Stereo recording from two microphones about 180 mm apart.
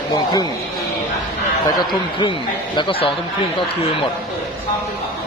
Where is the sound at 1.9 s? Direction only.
25° left (ahead or behind).